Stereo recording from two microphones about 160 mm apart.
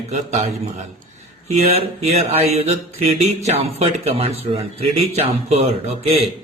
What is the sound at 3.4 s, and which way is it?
A man's voice, 40° right (ahead or behind).